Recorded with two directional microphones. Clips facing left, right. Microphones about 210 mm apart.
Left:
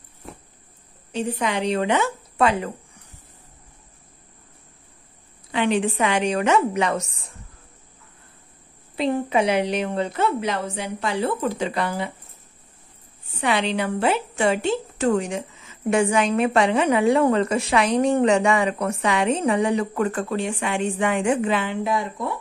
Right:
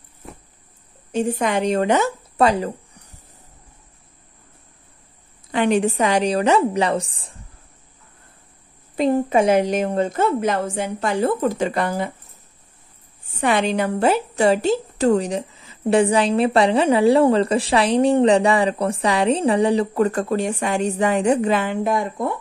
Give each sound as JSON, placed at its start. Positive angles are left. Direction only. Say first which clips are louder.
{"t": 1.1, "sound": "speech", "louder": "right 4 dB", "side_deg": -45}
{"t": 5.5, "sound": "a woman's voice", "louder": "right 3 dB", "side_deg": -45}
{"t": 8.9, "sound": "a woman's voice", "louder": "right 4 dB", "side_deg": -45}
{"t": 13.4, "sound": "a woman's voice", "louder": "right 3 dB", "side_deg": -45}